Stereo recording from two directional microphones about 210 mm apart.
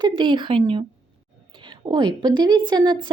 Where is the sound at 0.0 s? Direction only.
20° right (ahead or behind).